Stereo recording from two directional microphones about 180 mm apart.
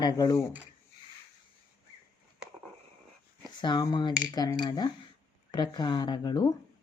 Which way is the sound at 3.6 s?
25° left (ahead or behind).